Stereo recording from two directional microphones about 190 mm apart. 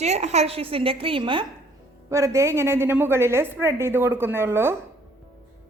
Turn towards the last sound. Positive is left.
turn(degrees=-10)  # may be behind; listen again after turning